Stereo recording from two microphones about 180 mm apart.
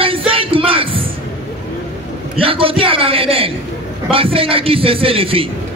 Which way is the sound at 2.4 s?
30° right (ahead or behind).